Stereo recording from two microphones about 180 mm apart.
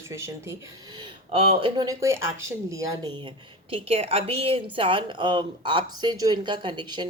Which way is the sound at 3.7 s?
35° right (ahead or behind).